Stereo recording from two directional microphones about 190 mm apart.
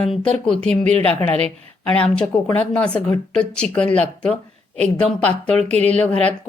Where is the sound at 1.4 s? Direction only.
5° left (ahead or behind).